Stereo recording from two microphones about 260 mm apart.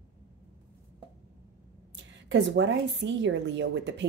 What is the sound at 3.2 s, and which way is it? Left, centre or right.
Speech, right.